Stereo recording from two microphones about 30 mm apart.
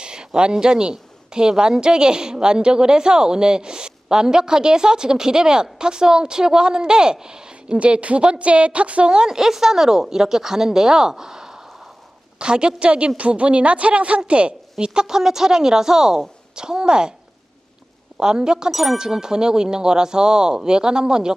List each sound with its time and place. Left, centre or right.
0.0 s a sound: right
0.6 s a woman's voice: right
7.5 s a woman's voice: right
9.1 s a woman's voice: right
12.4 s a woman's voice: right
14.8 s a woman's voice: right
18.2 s a woman's voice: right